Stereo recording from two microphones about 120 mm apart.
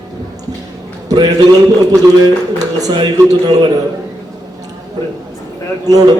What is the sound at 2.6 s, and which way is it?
Speech, 30° right (ahead or behind).